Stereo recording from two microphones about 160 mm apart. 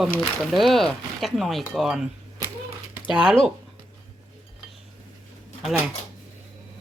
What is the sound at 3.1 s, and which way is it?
Speech, 5° right (ahead or behind).